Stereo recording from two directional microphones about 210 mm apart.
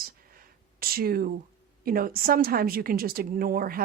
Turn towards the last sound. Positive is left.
turn(degrees=-45)  # may be behind; listen again after turning